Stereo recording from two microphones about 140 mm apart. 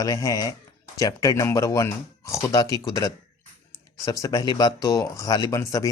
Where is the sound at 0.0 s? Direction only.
25° left (ahead or behind).